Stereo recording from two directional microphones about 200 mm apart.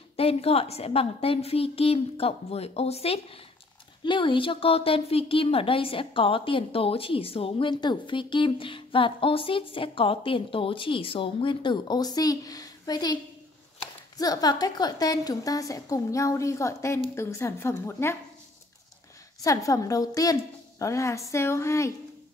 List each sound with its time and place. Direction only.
0.1 s a woman's voice: 30° left (ahead or behind); by 18.1 s 10° left (ahead or behind)
19.4 s a woman's voice: 15° left (ahead or behind)